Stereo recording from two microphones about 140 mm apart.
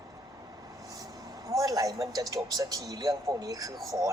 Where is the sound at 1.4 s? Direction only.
25° right (ahead or behind).